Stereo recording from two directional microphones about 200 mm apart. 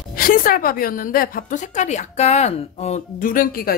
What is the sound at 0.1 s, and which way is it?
A woman's voice, 45° left (ahead or behind).